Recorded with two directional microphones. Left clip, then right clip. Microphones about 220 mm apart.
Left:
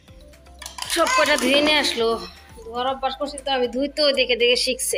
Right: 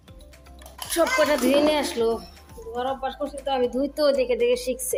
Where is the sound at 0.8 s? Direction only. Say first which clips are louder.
Left 2 dB; 10° right (ahead or behind).